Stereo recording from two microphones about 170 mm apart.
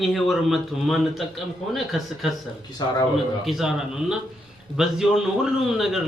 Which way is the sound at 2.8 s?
25° left (ahead or behind).